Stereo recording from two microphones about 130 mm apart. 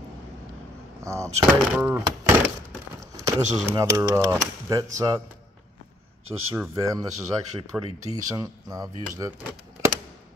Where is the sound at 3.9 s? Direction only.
25° right (ahead or behind).